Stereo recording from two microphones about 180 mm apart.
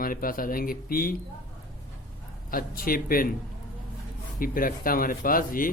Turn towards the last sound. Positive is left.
turn(degrees=50)  # may be behind; listen again after turning